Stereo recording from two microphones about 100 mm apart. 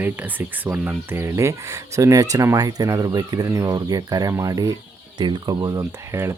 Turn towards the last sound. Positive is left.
turn(degrees=-30)  # may be behind; listen again after turning